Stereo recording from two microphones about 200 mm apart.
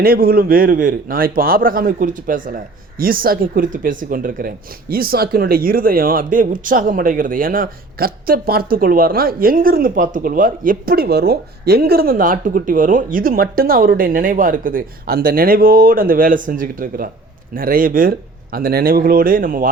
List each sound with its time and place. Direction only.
0.0 s speech: 50° right (ahead or behind)